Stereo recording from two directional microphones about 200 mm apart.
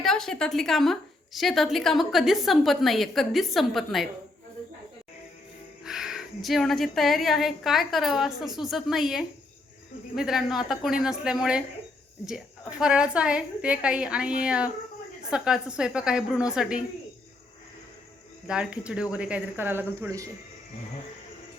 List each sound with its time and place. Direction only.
0.0 s a woman's voice: centre (ahead or behind)
5.8 s a woman's voice: 5° right (ahead or behind)
12.8 s a woman's voice: 5° right (ahead or behind)
18.4 s a woman's voice: 5° right (ahead or behind)